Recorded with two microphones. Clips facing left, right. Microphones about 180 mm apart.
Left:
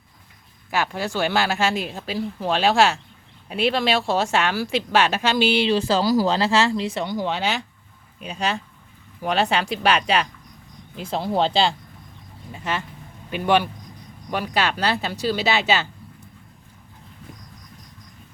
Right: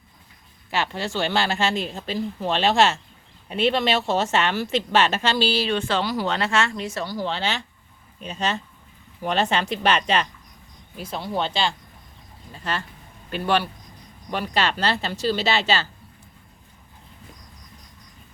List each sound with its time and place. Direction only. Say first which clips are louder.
0.9 s speech: left 2 dB; 5° left (ahead or behind)
5.3 s speech: left 3 dB; 15° left (ahead or behind)
5.7 s speech: left 5 dB; 35° left (ahead or behind)
7.0 s speech: left 2 dB; 15° left (ahead or behind)
10.9 s speech: left 5 dB; 30° left (ahead or behind)
12.5 s speech: left 2 dB; 10° left (ahead or behind)
15.1 s speech: left 1 dB; 15° left (ahead or behind)